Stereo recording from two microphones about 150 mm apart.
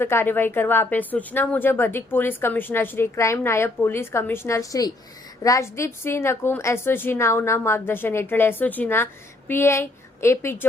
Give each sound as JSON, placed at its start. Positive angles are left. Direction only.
{"t": 0.0, "sound": "a woman's voice", "side_deg": 15}